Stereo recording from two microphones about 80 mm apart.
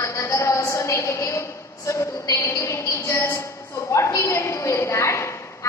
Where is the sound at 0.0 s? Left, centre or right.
Left.